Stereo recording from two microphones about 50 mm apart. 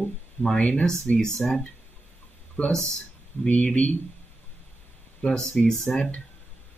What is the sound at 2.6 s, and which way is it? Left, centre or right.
Speech, left.